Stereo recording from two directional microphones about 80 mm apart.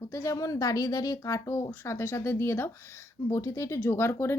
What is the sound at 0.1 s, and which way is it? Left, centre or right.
Speech, left.